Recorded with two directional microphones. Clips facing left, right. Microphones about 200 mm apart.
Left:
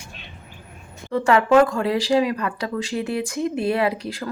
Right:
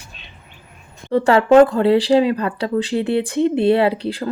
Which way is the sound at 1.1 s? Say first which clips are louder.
Right 4 dB; 35° right (ahead or behind).